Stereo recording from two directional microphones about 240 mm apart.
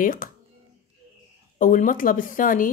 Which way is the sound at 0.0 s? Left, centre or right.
Left.